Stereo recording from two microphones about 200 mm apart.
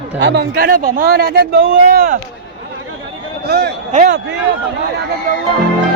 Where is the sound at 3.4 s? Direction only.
50° right (ahead or behind).